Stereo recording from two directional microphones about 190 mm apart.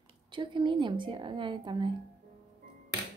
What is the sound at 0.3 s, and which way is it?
A woman's voice, 25° right (ahead or behind).